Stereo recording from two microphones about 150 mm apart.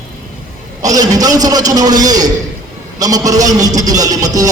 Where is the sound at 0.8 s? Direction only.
25° right (ahead or behind).